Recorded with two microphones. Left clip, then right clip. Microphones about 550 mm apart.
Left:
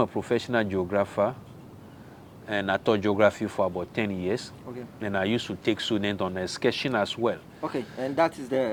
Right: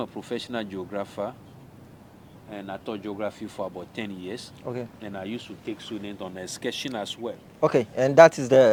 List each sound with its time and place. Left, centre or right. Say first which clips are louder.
0.0 s speech: left 6 dB; left
2.5 s speech: left 10 dB; left
7.6 s a man's voice: right 12 dB; right